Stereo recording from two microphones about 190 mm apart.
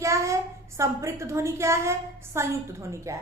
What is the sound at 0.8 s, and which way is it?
A woman's voice, 15° right (ahead or behind).